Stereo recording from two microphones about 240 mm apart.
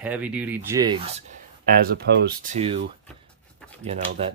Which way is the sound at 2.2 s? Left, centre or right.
Right.